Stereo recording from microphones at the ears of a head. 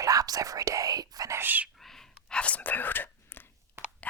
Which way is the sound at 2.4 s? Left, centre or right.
Left.